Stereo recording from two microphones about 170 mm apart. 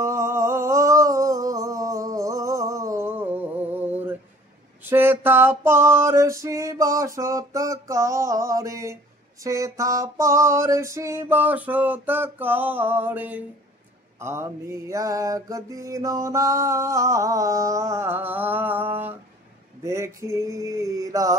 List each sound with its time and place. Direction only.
0.0 s music: 15° right (ahead or behind)
4.8 s mantra: 10° right (ahead or behind)
19.8 s a sound: 15° right (ahead or behind)